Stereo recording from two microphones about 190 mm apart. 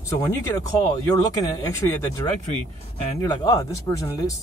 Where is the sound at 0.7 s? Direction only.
20° left (ahead or behind).